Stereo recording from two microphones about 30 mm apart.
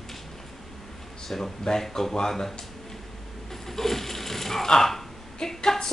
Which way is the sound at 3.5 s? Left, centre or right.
Centre.